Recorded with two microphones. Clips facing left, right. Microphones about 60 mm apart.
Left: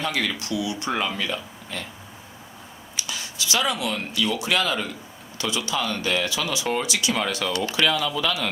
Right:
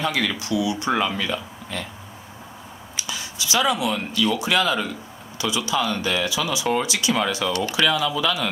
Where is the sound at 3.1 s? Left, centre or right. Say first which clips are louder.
Right 1 dB; right.